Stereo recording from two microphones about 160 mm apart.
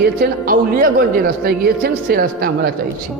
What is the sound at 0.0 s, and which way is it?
Speech, 70° right (ahead or behind).